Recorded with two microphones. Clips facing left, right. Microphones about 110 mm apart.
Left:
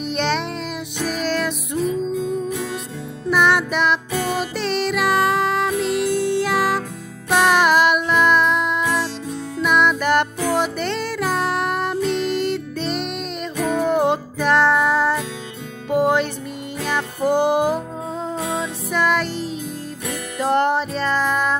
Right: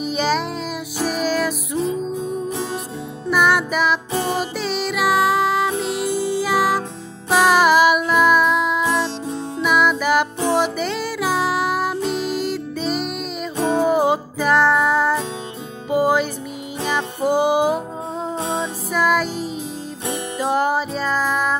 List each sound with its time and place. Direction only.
0.0 s music: 5° right (ahead or behind)
1.8 s music: 30° right (ahead or behind)
3.3 s music: centre (ahead or behind)
4.1 s music: 25° right (ahead or behind)
4.4 s music: 5° right (ahead or behind)
13.6 s music: 30° right (ahead or behind)
13.8 s music: 5° right (ahead or behind)
18.4 s music: 25° right (ahead or behind)
18.9 s music: centre (ahead or behind)